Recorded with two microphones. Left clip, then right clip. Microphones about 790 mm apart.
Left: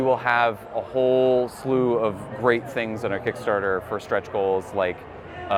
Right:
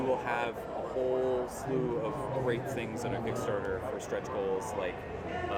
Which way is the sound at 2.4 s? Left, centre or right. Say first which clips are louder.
Left 11 dB; left.